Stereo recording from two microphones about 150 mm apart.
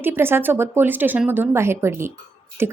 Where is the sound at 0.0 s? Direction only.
15° right (ahead or behind).